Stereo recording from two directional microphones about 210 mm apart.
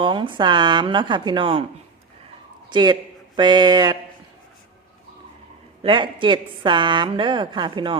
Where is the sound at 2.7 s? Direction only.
20° right (ahead or behind).